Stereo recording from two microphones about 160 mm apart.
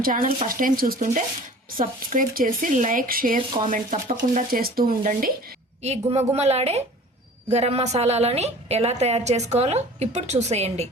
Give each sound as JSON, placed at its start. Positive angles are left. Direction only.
{"t": 0.0, "sound": "speech", "side_deg": -60}
{"t": 5.8, "sound": "a woman's voice", "side_deg": -40}